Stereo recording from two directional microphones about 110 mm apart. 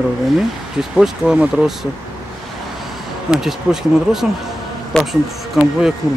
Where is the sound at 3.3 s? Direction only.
5° right (ahead or behind).